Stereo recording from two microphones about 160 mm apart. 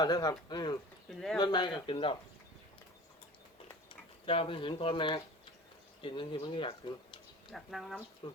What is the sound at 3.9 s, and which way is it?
Speech, 35° left (ahead or behind).